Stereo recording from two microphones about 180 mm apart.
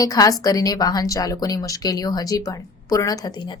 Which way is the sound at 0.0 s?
20° left (ahead or behind).